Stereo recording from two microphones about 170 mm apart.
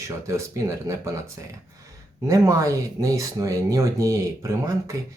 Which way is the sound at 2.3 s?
20° right (ahead or behind).